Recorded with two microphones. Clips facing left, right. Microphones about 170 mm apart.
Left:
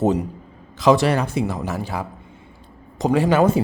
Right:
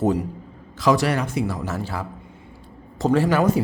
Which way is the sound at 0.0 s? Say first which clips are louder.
Left 2 dB; 25° left (ahead or behind).